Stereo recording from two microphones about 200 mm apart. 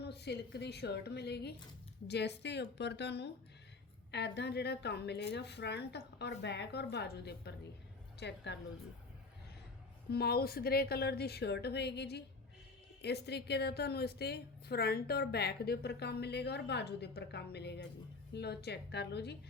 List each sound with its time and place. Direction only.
0.0 s a woman's voice: 55° left (ahead or behind)
10.1 s a woman's voice: 50° left (ahead or behind)